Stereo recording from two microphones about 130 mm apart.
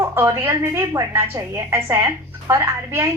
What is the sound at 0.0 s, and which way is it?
A woman's voice, 20° right (ahead or behind).